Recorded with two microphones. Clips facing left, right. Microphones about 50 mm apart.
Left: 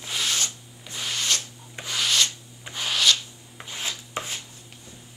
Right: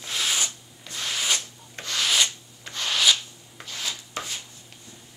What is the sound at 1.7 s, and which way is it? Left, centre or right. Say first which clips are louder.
Rub: even; centre.